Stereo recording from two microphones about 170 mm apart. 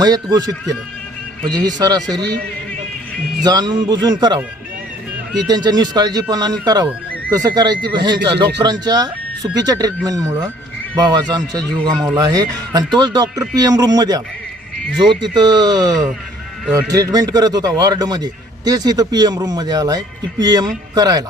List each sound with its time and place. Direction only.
0.0 s a man's voice: 25° right (ahead or behind)
3.4 s a man's voice: 25° right (ahead or behind)
5.5 s a man's voice: 25° right (ahead or behind)
15.2 s a man's voice: 25° right (ahead or behind)